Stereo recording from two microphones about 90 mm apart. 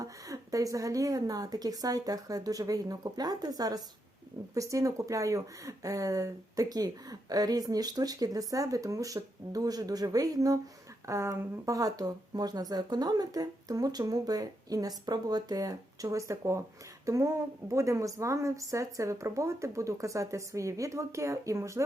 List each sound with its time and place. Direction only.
0.0 s speech: 40° right (ahead or behind)